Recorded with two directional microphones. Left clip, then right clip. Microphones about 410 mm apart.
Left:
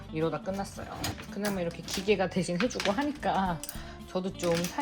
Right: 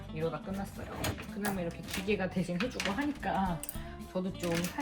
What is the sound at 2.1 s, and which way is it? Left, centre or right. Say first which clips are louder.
Speech: left 6 dB; centre.